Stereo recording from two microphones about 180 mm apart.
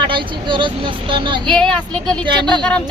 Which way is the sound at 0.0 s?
25° right (ahead or behind).